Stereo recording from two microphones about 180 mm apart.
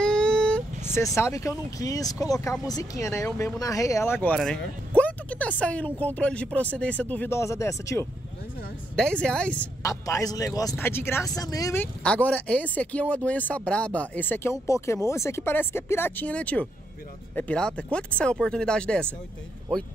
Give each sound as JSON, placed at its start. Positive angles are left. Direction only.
{"t": 0.0, "sound": "speech", "side_deg": 5}
{"t": 8.9, "sound": "speech", "side_deg": 5}
{"t": 9.8, "sound": "speech", "side_deg": 20}